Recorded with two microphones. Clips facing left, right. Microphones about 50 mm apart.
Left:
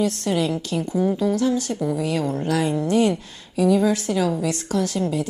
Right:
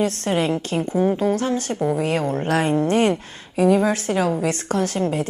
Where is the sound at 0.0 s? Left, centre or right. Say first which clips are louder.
Right 1 dB; right.